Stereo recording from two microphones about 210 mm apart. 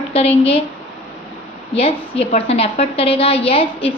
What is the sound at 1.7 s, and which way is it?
A woman's voice, 25° left (ahead or behind).